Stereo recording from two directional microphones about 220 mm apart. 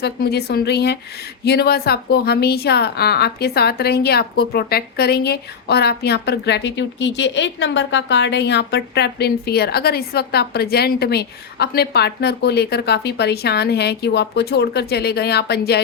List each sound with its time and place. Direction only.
0.0 s a woman's voice: 45° left (ahead or behind)